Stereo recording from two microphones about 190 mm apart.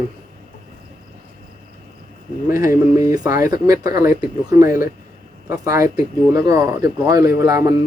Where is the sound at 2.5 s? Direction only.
15° right (ahead or behind).